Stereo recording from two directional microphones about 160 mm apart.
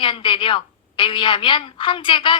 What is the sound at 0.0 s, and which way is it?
A woman's voice, 30° left (ahead or behind).